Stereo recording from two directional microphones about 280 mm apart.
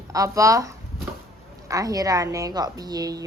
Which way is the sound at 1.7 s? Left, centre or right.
Centre.